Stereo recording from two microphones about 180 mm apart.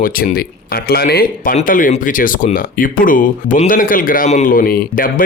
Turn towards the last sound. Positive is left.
turn(degrees=50)  # may be behind; listen again after turning